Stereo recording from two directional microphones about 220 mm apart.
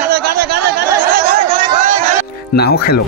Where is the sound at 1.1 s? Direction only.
40° right (ahead or behind).